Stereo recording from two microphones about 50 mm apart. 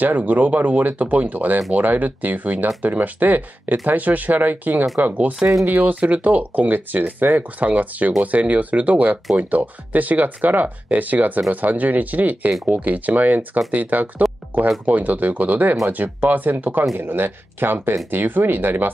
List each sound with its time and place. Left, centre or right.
0.0 s speech: right
5.7 s speech: right
5.9 s speech: right